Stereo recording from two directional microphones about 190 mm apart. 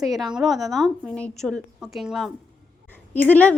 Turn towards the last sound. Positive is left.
turn(degrees=10)  # may be behind; listen again after turning